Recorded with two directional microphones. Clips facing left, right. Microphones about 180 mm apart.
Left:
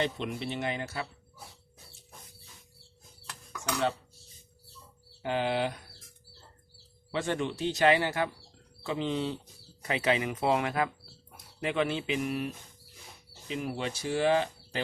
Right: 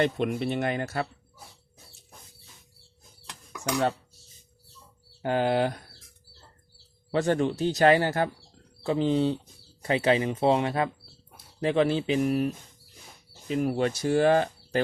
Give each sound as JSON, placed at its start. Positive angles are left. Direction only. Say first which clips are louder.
{"t": 0.0, "sound": "speech", "louder": "right 6 dB", "side_deg": -55}
{"t": 3.2, "sound": "dishes", "louder": "right 4 dB", "side_deg": -20}
{"t": 5.2, "sound": "speech", "louder": "right 5 dB", "side_deg": -45}
{"t": 7.1, "sound": "speech", "louder": "right 7 dB", "side_deg": -40}
{"t": 13.5, "sound": "speech", "louder": "right 8 dB", "side_deg": -45}